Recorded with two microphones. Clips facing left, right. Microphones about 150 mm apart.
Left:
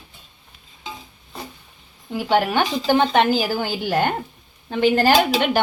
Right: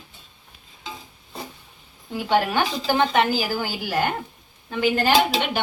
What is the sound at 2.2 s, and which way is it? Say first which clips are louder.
A woman's voice: left 2 dB; 15° left (ahead or behind).